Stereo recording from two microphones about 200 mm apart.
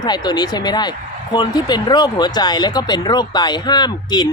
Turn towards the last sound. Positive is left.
turn(degrees=20)  # may be behind; listen again after turning